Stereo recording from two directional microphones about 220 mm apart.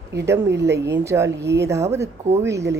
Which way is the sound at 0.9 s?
15° right (ahead or behind).